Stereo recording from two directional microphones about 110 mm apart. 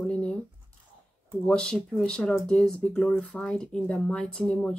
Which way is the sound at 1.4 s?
5° left (ahead or behind).